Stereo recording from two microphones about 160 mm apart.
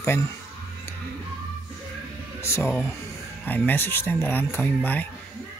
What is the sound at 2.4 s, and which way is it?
Speech, 15° left (ahead or behind).